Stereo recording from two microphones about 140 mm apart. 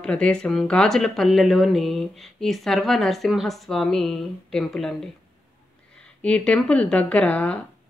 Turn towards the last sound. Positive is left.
turn(degrees=10)  # may be behind; listen again after turning